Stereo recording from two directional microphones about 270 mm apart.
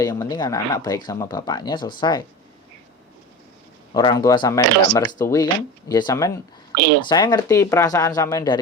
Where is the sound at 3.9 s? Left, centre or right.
Centre.